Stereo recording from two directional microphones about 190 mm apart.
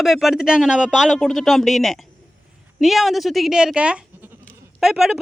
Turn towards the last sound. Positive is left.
turn(degrees=0)  # may be behind; listen again after turning